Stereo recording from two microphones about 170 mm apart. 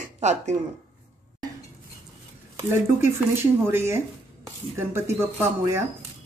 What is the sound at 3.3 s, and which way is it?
Speech, 15° right (ahead or behind).